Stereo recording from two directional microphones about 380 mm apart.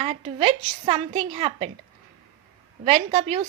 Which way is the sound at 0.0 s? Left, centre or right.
Centre.